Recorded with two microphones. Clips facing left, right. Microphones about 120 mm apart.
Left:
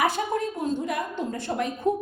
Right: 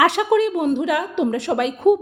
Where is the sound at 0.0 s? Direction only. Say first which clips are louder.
Right 9 dB; 80° right.